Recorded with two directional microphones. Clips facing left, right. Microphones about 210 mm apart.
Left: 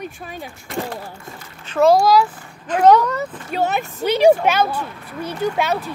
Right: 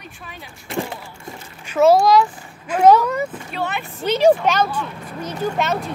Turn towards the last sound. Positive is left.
turn(degrees=5)  # may be behind; listen again after turning